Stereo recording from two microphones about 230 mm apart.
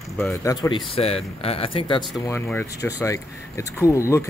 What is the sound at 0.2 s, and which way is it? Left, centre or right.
Speech, centre.